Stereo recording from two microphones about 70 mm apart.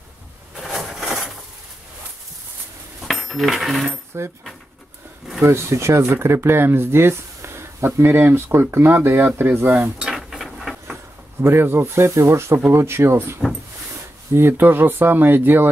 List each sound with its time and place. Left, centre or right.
0.6 s a sound: centre
3.0 s coin: centre
4.1 s speech: right
5.4 s speech: right
9.9 s a sound: centre
11.4 s speech: right